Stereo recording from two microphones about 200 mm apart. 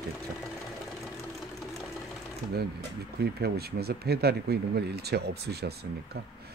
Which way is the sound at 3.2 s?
55° right (ahead or behind).